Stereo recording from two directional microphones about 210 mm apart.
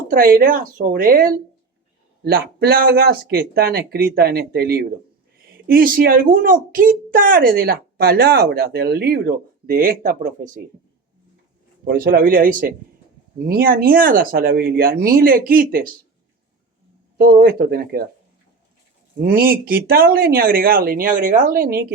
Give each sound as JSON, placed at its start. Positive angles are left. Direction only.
{"t": 0.1, "sound": "speech", "side_deg": -45}
{"t": 11.9, "sound": "speech", "side_deg": -45}
{"t": 17.2, "sound": "speech", "side_deg": -45}
{"t": 19.2, "sound": "speech", "side_deg": -45}